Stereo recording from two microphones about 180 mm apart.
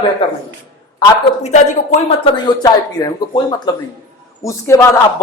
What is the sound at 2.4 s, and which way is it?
A man's voice, 25° left (ahead or behind).